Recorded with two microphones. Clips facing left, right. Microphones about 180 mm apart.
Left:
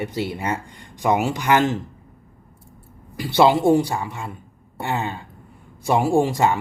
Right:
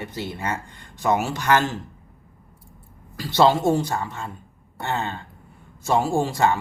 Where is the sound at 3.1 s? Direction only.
15° left (ahead or behind).